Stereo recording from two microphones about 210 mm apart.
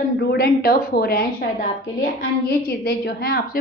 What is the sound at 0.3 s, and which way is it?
A woman's voice, 45° left (ahead or behind).